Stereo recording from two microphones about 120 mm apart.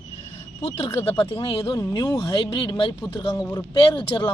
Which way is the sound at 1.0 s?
50° left (ahead or behind).